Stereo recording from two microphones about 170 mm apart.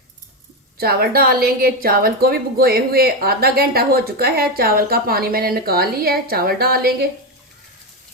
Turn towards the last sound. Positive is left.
turn(degrees=-65)  # may be behind; listen again after turning